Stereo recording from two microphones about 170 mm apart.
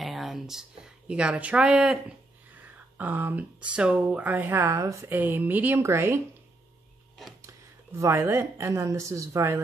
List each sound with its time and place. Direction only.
0.0 s speech: centre (ahead or behind)
7.4 s a woman's voice: 15° right (ahead or behind)